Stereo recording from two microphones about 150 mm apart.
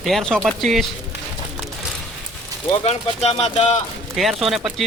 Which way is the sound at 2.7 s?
40° left (ahead or behind).